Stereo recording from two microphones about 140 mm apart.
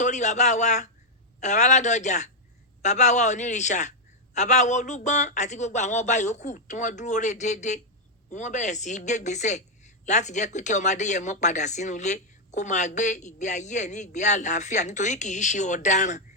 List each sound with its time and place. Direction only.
0.0 s speech: 60° left (ahead or behind)